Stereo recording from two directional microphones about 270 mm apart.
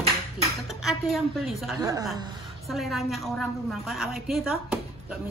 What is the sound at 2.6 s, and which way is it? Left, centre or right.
A woman's voice, centre.